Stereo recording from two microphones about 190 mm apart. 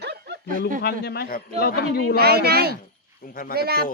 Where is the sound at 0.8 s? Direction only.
60° left (ahead or behind).